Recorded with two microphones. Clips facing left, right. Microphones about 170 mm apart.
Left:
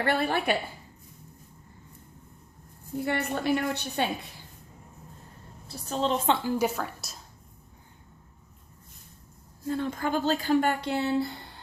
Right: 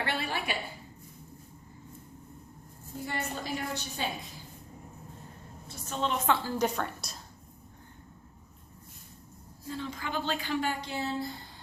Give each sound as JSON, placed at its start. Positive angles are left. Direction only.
{"t": 0.0, "sound": "speech", "side_deg": 50}
{"t": 3.0, "sound": "a woman's voice", "side_deg": 65}
{"t": 5.6, "sound": "a woman's voice", "side_deg": 35}
{"t": 6.4, "sound": "a woman's voice", "side_deg": 5}
{"t": 9.6, "sound": "speech", "side_deg": 55}